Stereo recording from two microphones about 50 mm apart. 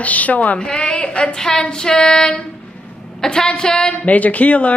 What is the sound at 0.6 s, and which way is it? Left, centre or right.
A woman's voice, centre.